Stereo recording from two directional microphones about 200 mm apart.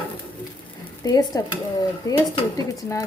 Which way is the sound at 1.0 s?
20° left (ahead or behind).